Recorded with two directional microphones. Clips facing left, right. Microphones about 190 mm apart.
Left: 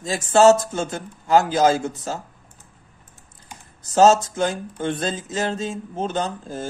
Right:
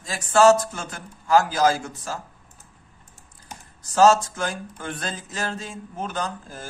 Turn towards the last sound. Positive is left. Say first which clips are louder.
# left 5 dB
turn(degrees=25)  # may be behind; listen again after turning